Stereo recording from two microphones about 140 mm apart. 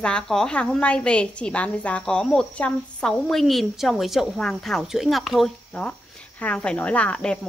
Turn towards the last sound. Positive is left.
turn(degrees=5)  # may be behind; listen again after turning